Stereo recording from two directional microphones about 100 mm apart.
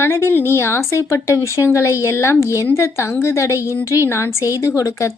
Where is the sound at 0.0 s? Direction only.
25° left (ahead or behind).